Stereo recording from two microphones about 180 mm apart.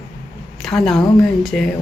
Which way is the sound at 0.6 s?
Centre (ahead or behind).